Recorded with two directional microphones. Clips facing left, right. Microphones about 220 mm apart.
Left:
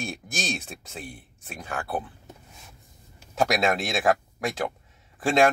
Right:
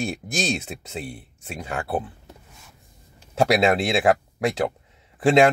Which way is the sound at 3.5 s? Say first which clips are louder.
Right 8 dB; 25° right (ahead or behind).